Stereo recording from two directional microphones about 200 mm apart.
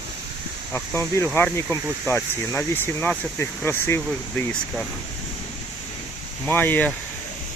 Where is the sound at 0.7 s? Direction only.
15° left (ahead or behind).